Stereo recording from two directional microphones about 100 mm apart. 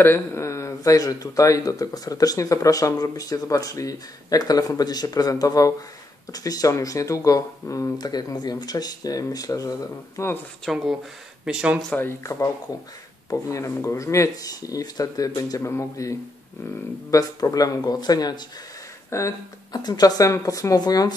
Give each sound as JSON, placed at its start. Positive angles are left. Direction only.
{"t": 0.0, "sound": "speech", "side_deg": 25}
{"t": 10.6, "sound": "speech", "side_deg": 0}
{"t": 11.8, "sound": "speech", "side_deg": 20}
{"t": 12.2, "sound": "speech", "side_deg": 30}
{"t": 19.0, "sound": "speech", "side_deg": 30}
{"t": 19.7, "sound": "speech", "side_deg": 40}